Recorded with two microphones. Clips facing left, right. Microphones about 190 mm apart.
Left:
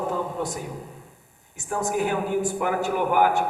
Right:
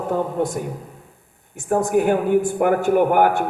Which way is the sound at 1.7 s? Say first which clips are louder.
Right 7 dB; 55° right (ahead or behind).